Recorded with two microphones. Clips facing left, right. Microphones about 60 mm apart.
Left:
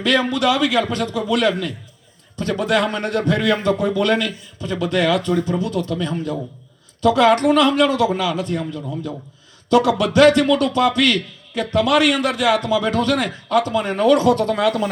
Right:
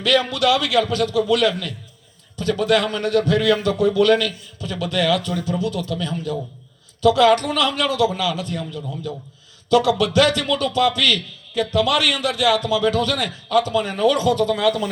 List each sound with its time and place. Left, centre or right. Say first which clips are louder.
0.3 s a man's voice: left 1 dB; left